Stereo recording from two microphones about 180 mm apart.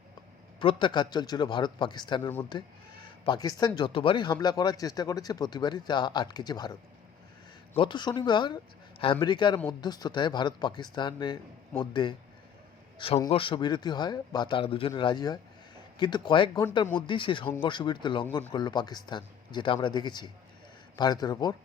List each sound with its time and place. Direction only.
0.6 s speech: 30° left (ahead or behind)
7.8 s speech: 25° left (ahead or behind)
13.3 s speech: 30° left (ahead or behind)